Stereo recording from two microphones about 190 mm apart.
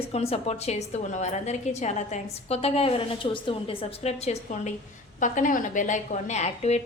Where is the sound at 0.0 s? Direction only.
30° left (ahead or behind).